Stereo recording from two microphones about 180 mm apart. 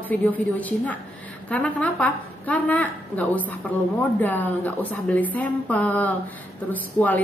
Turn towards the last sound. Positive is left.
turn(degrees=10)  # may be behind; listen again after turning